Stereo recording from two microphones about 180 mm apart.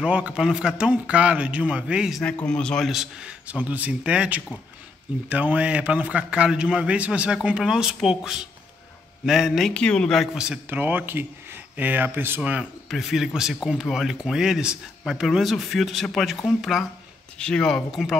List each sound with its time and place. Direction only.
0.0 s a man's voice: 5° right (ahead or behind)